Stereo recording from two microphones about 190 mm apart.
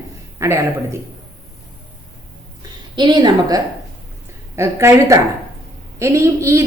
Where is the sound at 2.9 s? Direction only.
25° right (ahead or behind).